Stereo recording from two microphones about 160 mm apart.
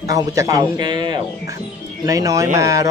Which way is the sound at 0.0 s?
20° right (ahead or behind).